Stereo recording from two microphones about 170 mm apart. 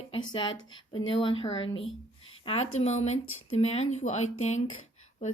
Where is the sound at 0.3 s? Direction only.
25° left (ahead or behind).